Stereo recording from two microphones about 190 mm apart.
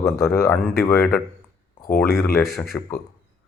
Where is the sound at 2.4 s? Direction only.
Centre (ahead or behind).